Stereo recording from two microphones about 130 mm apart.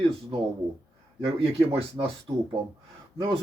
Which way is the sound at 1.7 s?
45° right (ahead or behind).